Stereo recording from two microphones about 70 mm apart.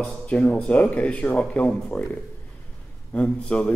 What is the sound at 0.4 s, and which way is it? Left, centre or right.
Speech, centre.